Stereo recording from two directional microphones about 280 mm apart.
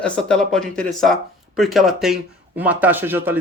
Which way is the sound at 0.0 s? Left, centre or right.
Centre.